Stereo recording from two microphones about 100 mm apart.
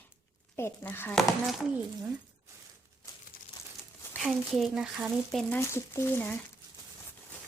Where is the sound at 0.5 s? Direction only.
25° left (ahead or behind).